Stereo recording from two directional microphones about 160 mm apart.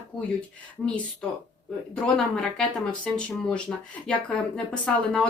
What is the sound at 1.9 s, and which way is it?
Speech, 5° left (ahead or behind).